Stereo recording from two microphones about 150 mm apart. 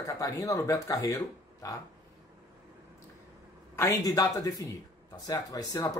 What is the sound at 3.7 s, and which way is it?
Speech, 20° left (ahead or behind).